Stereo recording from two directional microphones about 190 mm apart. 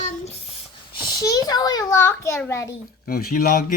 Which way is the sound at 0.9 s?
20° left (ahead or behind).